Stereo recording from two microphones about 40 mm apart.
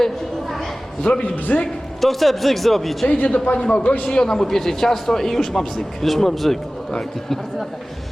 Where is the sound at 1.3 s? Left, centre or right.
Left.